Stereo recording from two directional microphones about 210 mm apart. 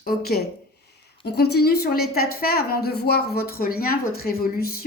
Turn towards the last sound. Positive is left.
turn(degrees=45)  # may be behind; listen again after turning